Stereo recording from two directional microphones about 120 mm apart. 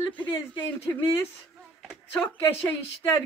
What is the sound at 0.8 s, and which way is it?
Speech, 20° left (ahead or behind).